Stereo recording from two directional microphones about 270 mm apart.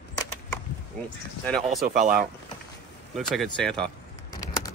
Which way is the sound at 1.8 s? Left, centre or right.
Right.